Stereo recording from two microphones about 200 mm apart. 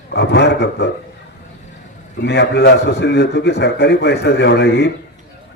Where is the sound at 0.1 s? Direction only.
55° left (ahead or behind).